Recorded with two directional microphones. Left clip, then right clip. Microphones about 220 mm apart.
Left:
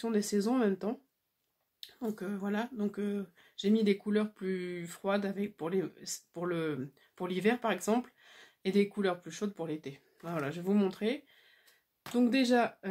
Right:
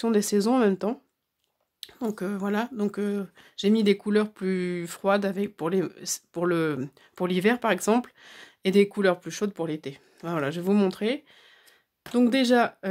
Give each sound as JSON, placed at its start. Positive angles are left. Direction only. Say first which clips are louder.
{"t": 0.0, "sound": "speech", "louder": "right 8 dB", "side_deg": -40}